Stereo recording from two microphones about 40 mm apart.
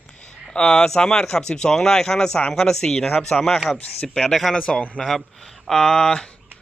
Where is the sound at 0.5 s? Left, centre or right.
Centre.